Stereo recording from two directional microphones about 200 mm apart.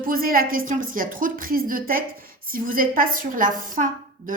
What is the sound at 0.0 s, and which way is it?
A woman's voice, 45° right (ahead or behind).